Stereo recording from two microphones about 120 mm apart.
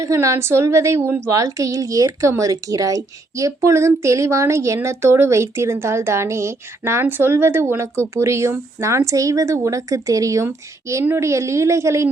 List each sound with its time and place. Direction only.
0.0 s a child's voice: 25° right (ahead or behind)